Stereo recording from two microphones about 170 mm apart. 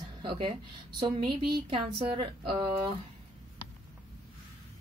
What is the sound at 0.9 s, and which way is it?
A woman's voice, 30° right (ahead or behind).